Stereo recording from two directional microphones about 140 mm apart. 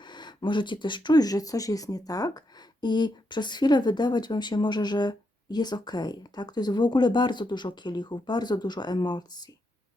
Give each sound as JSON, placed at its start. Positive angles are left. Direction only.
{"t": 0.0, "sound": "speech", "side_deg": 30}